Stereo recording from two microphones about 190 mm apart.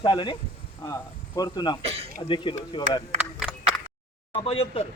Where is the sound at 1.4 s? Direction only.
20° left (ahead or behind).